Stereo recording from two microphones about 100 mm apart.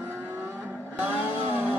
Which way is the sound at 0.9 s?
15° right (ahead or behind).